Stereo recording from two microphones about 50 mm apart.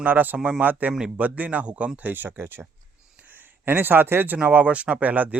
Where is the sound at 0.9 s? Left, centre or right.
Centre.